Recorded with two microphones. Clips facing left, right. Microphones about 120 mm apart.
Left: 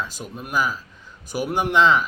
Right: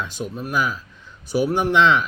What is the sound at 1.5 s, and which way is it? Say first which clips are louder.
Speech: left 1 dB; 10° left (ahead or behind).